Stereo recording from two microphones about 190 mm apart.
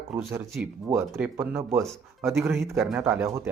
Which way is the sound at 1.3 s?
15° right (ahead or behind).